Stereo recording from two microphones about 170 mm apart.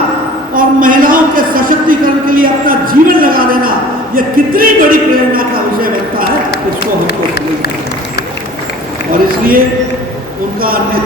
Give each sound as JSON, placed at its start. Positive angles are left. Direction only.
{"t": 0.5, "sound": "a sound", "side_deg": -55}
{"t": 4.1, "sound": "speech", "side_deg": -55}
{"t": 9.1, "sound": "a man's voice", "side_deg": -55}